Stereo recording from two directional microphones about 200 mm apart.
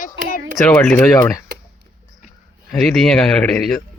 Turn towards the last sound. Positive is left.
turn(degrees=0)  # may be behind; listen again after turning